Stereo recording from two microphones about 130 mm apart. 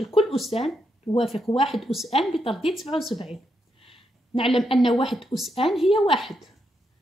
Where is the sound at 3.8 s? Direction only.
45° left (ahead or behind).